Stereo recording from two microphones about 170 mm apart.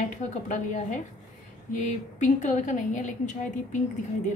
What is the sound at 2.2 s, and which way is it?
A woman's voice, 45° left (ahead or behind).